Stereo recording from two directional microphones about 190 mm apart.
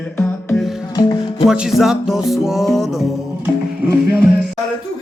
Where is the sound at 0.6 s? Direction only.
Centre (ahead or behind).